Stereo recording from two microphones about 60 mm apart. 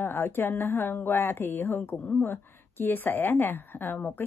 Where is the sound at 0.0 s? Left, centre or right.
Left.